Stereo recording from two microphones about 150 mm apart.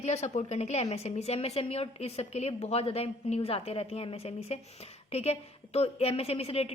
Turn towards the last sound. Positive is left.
turn(degrees=40)  # may be behind; listen again after turning